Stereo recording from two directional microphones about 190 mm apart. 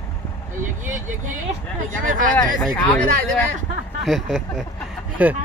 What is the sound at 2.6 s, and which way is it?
Speech, centre (ahead or behind).